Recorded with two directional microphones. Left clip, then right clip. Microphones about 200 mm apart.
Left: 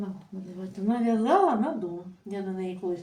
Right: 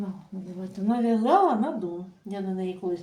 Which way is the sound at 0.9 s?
20° right (ahead or behind).